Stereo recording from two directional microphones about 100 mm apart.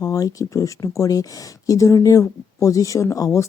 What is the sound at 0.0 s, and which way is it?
Speech, 35° left (ahead or behind).